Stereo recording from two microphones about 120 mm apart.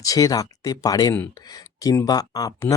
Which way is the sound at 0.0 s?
30° left (ahead or behind).